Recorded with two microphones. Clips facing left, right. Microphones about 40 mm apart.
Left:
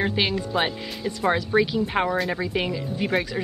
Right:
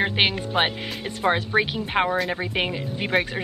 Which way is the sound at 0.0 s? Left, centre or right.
Right.